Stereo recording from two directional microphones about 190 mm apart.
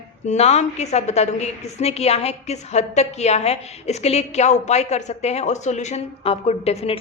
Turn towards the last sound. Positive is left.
turn(degrees=35)  # may be behind; listen again after turning